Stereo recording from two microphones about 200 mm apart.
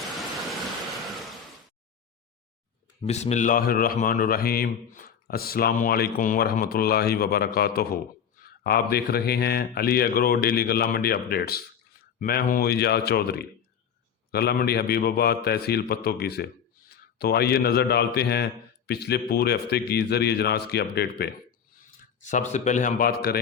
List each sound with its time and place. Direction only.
3.0 s a man's voice: 35° left (ahead or behind); by 21.2 s 55° left (ahead or behind)
22.2 s a man's voice: 40° left (ahead or behind)